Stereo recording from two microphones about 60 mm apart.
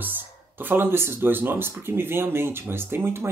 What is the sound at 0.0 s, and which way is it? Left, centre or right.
Speech, right.